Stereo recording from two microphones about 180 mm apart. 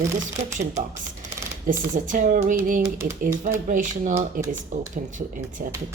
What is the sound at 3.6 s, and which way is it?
Speech, 45° right (ahead or behind).